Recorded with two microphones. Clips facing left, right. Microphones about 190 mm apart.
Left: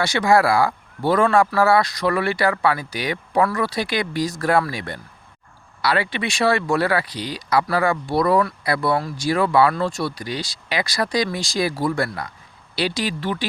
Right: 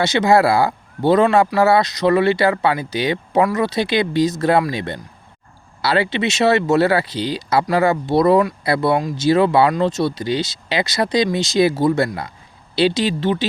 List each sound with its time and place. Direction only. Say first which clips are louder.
0.0 s speech: right 3 dB; 20° right (ahead or behind)